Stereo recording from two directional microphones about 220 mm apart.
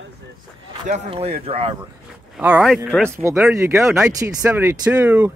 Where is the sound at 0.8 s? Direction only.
30° right (ahead or behind).